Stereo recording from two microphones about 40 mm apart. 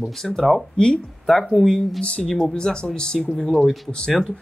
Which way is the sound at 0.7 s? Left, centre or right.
Left.